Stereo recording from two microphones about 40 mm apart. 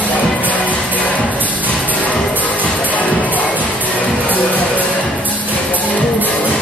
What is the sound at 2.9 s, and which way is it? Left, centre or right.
Music, left.